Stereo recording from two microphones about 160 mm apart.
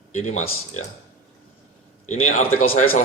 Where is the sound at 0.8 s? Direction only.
45° left (ahead or behind).